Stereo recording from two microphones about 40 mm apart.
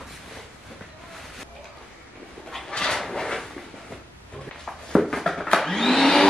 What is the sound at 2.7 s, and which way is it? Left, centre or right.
Train, centre.